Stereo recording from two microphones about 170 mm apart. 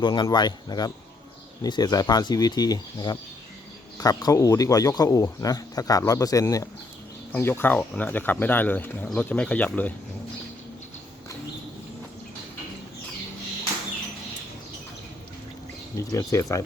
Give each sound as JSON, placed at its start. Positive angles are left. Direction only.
{"t": 0.0, "sound": "speech", "side_deg": 25}
{"t": 16.0, "sound": "speech", "side_deg": 15}